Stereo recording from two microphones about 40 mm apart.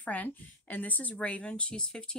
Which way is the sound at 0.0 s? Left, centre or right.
Left.